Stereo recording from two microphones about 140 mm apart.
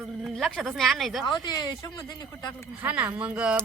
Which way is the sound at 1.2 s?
35° left (ahead or behind).